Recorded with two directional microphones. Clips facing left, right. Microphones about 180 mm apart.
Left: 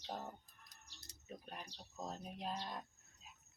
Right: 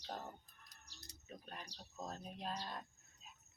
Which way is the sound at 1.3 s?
10° left (ahead or behind).